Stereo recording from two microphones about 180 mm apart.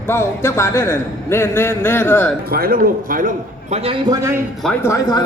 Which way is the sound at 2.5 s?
55° right (ahead or behind).